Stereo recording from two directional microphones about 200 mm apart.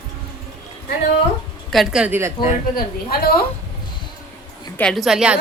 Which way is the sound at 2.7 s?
50° left (ahead or behind).